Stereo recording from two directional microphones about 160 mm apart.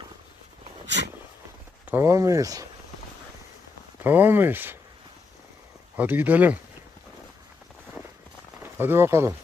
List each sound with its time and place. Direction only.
0.9 s dog: 90° right
1.9 s speech: 15° right (ahead or behind)
4.0 s speech: 10° right (ahead or behind)
6.0 s speech: 10° right (ahead or behind)
8.8 s speech: 15° right (ahead or behind)